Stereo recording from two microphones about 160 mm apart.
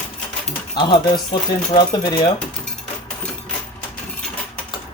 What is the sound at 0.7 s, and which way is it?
Speech, 30° left (ahead or behind).